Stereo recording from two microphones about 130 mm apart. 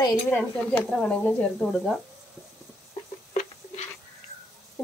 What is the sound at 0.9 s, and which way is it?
Speech, 10° left (ahead or behind).